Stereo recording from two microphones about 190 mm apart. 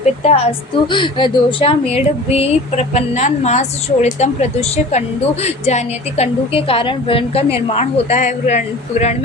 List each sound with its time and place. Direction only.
0.0 s a woman's voice: 35° left (ahead or behind)